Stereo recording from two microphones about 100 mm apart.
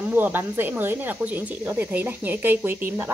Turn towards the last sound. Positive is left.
turn(degrees=-20)  # may be behind; listen again after turning